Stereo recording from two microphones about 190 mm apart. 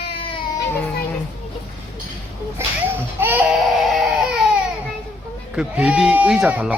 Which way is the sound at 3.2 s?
10° right (ahead or behind).